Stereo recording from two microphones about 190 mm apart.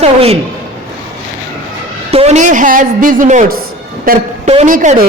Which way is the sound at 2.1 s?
35° right (ahead or behind).